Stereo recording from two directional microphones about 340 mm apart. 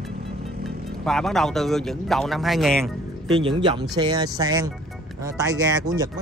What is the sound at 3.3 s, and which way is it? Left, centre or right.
Speech, centre.